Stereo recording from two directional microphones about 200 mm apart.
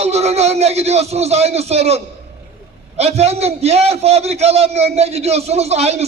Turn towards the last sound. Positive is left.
turn(degrees=-30)  # may be behind; listen again after turning